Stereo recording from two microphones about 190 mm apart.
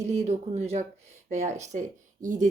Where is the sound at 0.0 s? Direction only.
35° right (ahead or behind).